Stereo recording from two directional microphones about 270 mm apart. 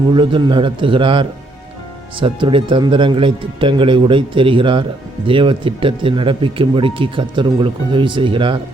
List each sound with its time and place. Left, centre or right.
0.1 s a man's voice: centre